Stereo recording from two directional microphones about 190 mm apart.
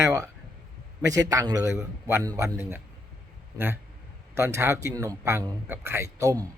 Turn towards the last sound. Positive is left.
turn(degrees=-15)  # may be behind; listen again after turning